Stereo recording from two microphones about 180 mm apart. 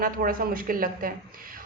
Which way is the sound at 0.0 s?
55° right (ahead or behind).